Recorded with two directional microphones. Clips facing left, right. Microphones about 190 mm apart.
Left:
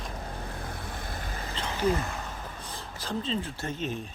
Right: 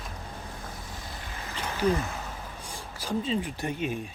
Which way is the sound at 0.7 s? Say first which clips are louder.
Left 3 dB; 60° left (ahead or behind).